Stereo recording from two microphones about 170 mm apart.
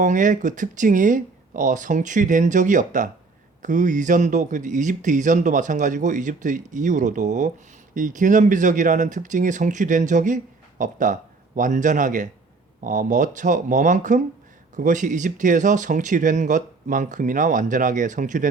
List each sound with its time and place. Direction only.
0.0 s speech: 50° right (ahead or behind)